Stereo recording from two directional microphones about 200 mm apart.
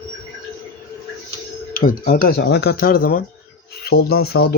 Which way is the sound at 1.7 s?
45° left (ahead or behind).